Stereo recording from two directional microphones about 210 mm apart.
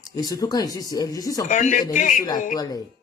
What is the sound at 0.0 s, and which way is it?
Speech, 15° left (ahead or behind).